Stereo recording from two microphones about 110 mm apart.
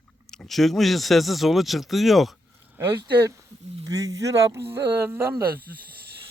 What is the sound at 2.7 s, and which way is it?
Speech, 25° right (ahead or behind).